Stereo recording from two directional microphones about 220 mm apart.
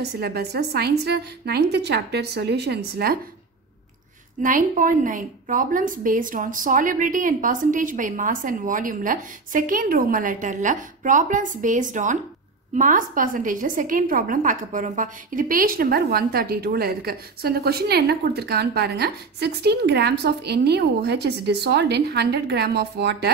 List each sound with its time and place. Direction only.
0.0 s a woman's voice: 45° right (ahead or behind)
4.4 s a woman's voice: 35° right (ahead or behind)